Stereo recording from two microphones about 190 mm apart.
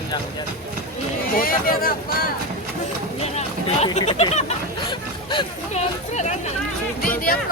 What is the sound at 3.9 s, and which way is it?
Speech, 30° left (ahead or behind).